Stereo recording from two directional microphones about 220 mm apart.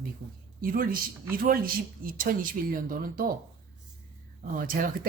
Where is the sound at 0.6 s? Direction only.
40° right (ahead or behind).